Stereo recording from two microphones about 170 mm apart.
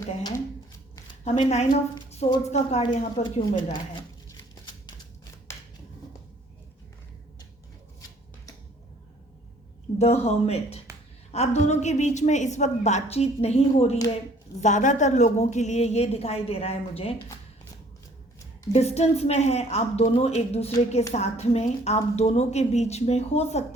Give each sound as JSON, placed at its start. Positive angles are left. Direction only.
{"t": 0.2, "sound": "speech", "side_deg": 25}
{"t": 1.2, "sound": "a woman's voice", "side_deg": 40}
{"t": 10.0, "sound": "a woman's voice", "side_deg": 40}
{"t": 18.7, "sound": "a woman's voice", "side_deg": 40}